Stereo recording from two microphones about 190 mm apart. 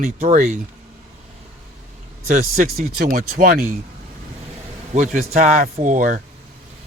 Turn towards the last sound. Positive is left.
turn(degrees=-40)  # may be behind; listen again after turning